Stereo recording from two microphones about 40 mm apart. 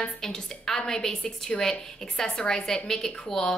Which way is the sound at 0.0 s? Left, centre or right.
Centre.